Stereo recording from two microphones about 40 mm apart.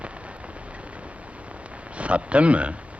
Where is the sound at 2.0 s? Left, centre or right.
Right.